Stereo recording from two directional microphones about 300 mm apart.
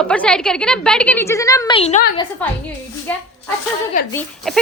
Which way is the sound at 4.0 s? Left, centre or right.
Left.